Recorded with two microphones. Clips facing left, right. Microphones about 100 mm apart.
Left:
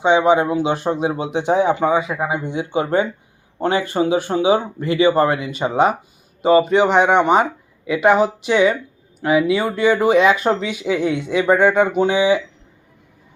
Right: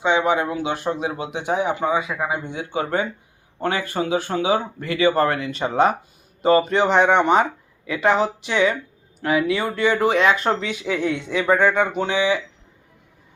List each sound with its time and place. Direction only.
0.0 s speech: 20° left (ahead or behind)